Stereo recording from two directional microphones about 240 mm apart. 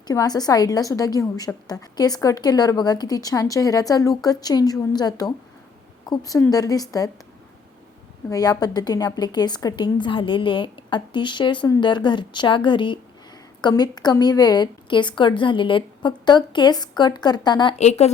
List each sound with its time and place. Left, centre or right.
0.1 s a woman's voice: centre
8.3 s a woman's voice: centre